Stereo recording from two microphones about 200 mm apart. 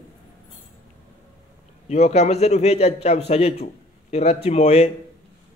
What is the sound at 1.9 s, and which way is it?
A man's voice, 35° left (ahead or behind).